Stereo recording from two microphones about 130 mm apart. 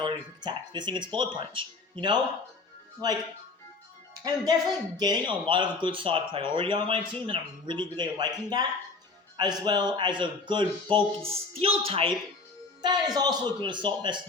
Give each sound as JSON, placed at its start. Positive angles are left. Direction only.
{"t": 0.0, "sound": "speech", "side_deg": -35}
{"t": 12.8, "sound": "speech", "side_deg": -30}